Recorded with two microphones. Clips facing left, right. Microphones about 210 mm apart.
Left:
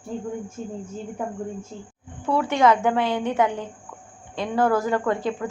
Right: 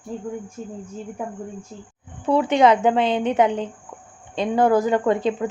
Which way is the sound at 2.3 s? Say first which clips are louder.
Right 3 dB; 20° right (ahead or behind).